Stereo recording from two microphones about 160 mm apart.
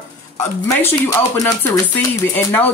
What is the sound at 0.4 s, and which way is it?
Speech, 15° left (ahead or behind).